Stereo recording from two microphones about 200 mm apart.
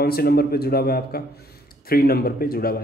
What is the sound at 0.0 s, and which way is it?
A man's voice, 50° left (ahead or behind).